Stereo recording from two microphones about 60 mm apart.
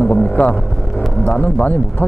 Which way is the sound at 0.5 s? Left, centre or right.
Centre.